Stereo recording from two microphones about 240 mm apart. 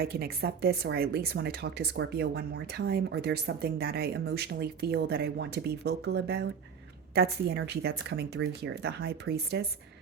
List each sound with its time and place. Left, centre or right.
0.0 s speech: right